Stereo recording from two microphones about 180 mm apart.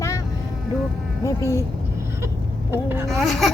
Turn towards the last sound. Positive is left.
turn(degrees=0)  # may be behind; listen again after turning